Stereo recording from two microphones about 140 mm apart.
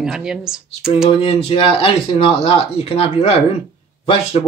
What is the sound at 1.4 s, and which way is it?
Speech, 40° left (ahead or behind).